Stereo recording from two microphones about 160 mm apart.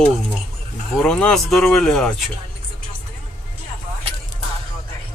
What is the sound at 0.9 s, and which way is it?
Speech, 5° left (ahead or behind).